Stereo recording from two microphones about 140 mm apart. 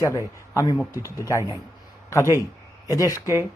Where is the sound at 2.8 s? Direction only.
25° left (ahead or behind).